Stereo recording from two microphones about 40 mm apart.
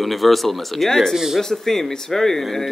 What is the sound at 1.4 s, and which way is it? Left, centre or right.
Speech, centre.